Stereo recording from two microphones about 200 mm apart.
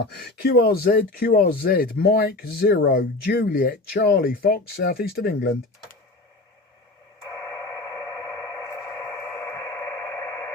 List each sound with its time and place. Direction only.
0.1 s speech: 50° left (ahead or behind)
8.4 s radio: 5° left (ahead or behind)